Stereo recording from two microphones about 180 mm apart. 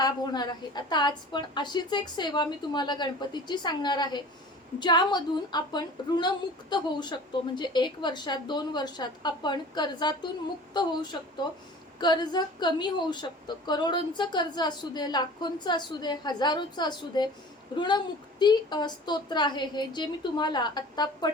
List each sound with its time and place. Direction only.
0.0 s a woman's voice: 25° left (ahead or behind)